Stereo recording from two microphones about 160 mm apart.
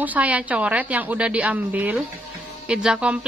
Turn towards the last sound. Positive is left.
turn(degrees=-5)  # may be behind; listen again after turning